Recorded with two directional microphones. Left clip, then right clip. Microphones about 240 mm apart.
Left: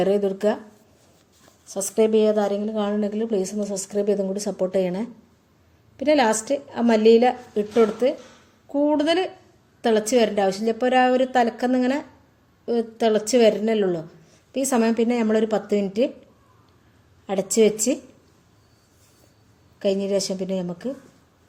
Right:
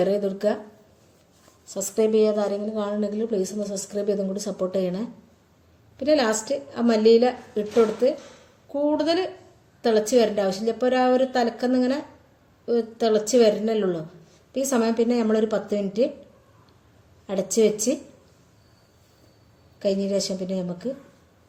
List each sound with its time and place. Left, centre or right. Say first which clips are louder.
0.0 s a woman's voice: left 2 dB; left
1.6 s a woman's voice: left 2 dB; left
17.2 s a woman's voice: left 2 dB; left
19.8 s a woman's voice: left 2 dB; left